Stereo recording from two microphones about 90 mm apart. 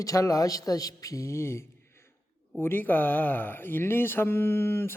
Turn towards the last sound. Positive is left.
turn(degrees=25)  # may be behind; listen again after turning